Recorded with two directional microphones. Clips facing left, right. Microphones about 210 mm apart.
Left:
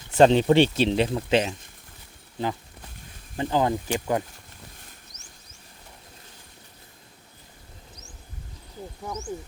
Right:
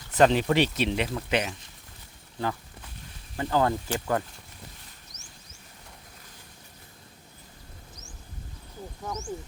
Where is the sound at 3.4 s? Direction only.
15° left (ahead or behind).